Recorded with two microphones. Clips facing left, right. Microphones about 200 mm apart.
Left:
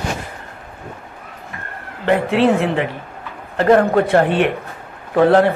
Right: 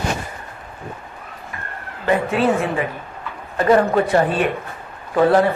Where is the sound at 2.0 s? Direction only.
65° left (ahead or behind).